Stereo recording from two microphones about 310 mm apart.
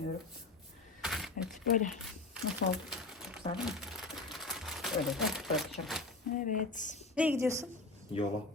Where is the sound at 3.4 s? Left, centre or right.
Centre.